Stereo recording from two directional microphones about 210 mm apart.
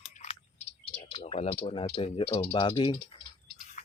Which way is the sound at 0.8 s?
25° left (ahead or behind).